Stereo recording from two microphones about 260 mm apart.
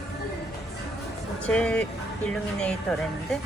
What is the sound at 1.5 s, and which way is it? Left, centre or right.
Speech, centre.